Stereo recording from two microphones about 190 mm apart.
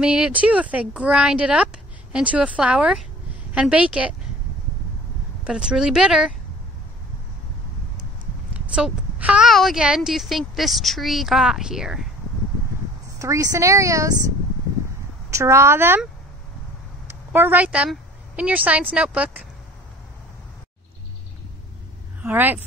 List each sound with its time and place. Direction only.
0.0 s a woman's voice: 5° right (ahead or behind)
5.4 s a woman's voice: 5° right (ahead or behind)
8.7 s a woman's voice: 5° right (ahead or behind)
13.2 s speech: 15° right (ahead or behind)
15.3 s speech: 15° right (ahead or behind)
17.3 s speech: 10° right (ahead or behind)
22.2 s speech: 10° right (ahead or behind)